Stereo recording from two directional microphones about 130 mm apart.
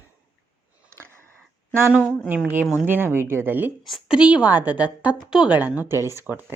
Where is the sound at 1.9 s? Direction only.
10° right (ahead or behind).